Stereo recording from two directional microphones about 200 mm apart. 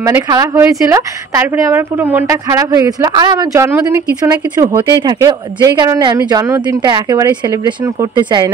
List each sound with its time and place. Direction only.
0.0 s a woman's voice: 20° right (ahead or behind)